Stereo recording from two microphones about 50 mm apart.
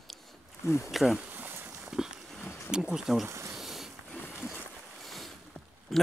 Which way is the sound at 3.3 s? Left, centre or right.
Right.